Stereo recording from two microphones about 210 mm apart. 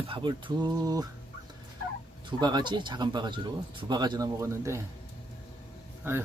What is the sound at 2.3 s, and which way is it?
Speech, 20° right (ahead or behind).